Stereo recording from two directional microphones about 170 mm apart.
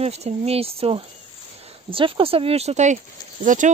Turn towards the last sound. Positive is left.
turn(degrees=-50)  # may be behind; listen again after turning